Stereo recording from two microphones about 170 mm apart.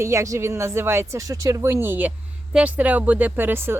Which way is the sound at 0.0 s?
15° right (ahead or behind).